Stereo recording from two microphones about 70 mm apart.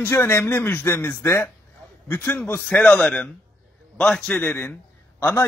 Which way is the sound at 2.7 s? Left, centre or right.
Left.